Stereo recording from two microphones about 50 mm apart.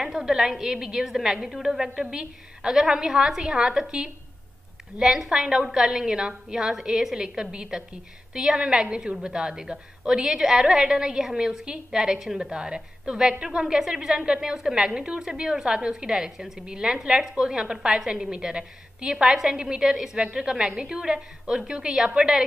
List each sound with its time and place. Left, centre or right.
0.0 s a woman's voice: centre